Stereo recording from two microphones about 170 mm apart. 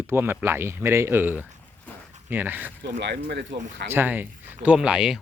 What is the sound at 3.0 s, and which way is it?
Speech, 90° right.